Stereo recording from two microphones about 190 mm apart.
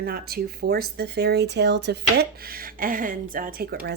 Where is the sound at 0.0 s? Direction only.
55° right (ahead or behind).